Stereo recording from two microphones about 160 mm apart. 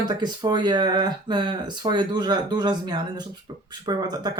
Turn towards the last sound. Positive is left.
turn(degrees=-25)  # may be behind; listen again after turning